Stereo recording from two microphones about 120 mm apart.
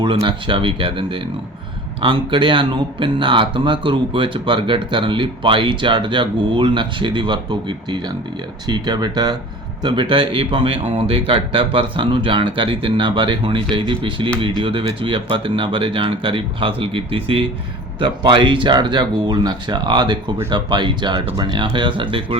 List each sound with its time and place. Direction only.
0.3 s speech: 45° right (ahead or behind)